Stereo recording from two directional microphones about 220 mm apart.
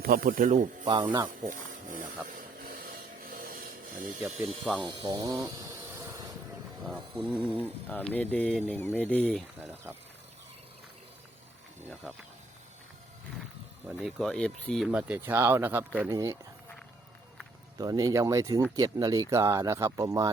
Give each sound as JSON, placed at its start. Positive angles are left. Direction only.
{"t": 0.0, "sound": "speech", "side_deg": -40}
{"t": 2.6, "sound": "a sound", "side_deg": -40}
{"t": 4.6, "sound": "speech", "side_deg": 0}
{"t": 4.9, "sound": "a sound", "side_deg": -20}
{"t": 6.8, "sound": "speech", "side_deg": -5}
{"t": 7.9, "sound": "speech", "side_deg": 5}
{"t": 9.6, "sound": "speech", "side_deg": -10}
{"t": 13.8, "sound": "speech", "side_deg": 0}
{"t": 17.7, "sound": "speech", "side_deg": -15}